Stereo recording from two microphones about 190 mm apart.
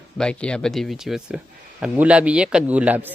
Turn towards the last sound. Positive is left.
turn(degrees=-10)  # may be behind; listen again after turning